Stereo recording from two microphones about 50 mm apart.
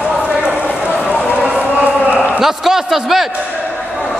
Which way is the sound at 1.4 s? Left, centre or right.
Right.